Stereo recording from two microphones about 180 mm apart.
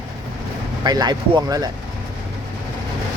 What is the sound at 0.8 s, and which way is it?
Speech, 25° right (ahead or behind).